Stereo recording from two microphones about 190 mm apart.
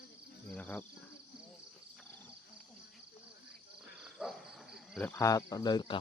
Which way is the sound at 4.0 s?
Centre (ahead or behind).